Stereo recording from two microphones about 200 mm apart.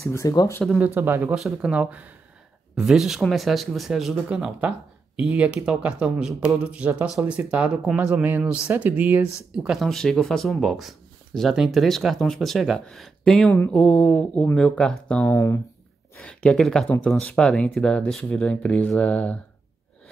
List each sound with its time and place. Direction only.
0.0 s speech: 15° left (ahead or behind)
0.7 s speech: 10° right (ahead or behind)